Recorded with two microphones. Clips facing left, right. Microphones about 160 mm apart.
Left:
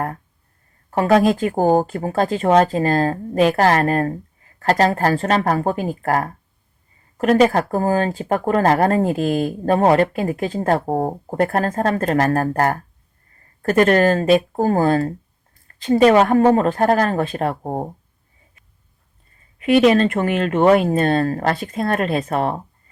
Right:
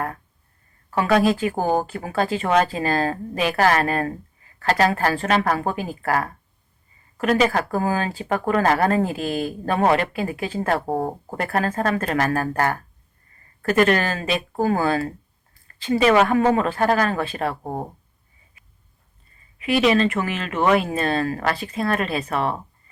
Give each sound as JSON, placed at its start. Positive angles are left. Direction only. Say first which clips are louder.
{"t": 0.9, "sound": "speech", "louder": "left 3 dB", "side_deg": 40}
{"t": 19.9, "sound": "speech", "louder": "left 3 dB", "side_deg": 50}